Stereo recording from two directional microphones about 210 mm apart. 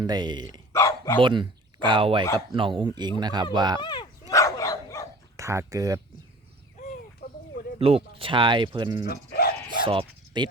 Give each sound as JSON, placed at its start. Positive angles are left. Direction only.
{"t": 0.0, "sound": "speech", "side_deg": -20}
{"t": 0.7, "sound": "dog", "side_deg": 15}
{"t": 1.2, "sound": "speech", "side_deg": -20}
{"t": 3.8, "sound": "dog", "side_deg": 20}
{"t": 5.4, "sound": "speech", "side_deg": -15}
{"t": 7.8, "sound": "speech", "side_deg": -30}
{"t": 9.0, "sound": "cricket", "side_deg": 45}
{"t": 9.8, "sound": "speech", "side_deg": -25}